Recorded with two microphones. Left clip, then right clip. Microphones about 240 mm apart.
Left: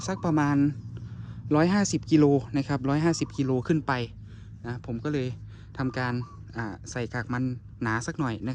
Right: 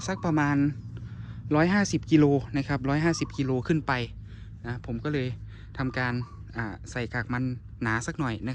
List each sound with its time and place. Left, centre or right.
0.0 s speech: centre